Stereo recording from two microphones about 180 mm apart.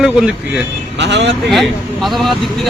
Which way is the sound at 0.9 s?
75° right (ahead or behind).